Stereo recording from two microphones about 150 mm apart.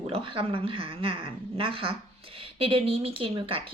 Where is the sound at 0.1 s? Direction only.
35° right (ahead or behind).